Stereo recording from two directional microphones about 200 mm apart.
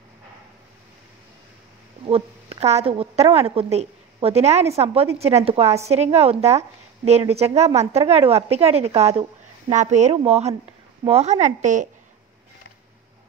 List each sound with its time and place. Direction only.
2.0 s a woman's voice: 30° right (ahead or behind)